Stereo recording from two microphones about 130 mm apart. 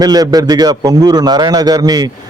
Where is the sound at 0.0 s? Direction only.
30° right (ahead or behind).